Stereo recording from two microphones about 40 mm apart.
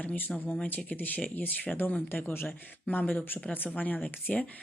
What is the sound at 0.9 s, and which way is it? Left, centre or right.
Speech, left.